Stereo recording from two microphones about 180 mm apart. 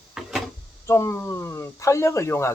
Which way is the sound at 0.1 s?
5° right (ahead or behind).